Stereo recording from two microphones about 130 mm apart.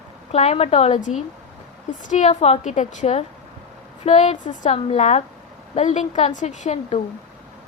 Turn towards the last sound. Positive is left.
turn(degrees=60)  # may be behind; listen again after turning